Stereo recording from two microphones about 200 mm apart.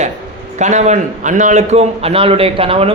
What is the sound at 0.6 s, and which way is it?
A man's voice, 35° right (ahead or behind).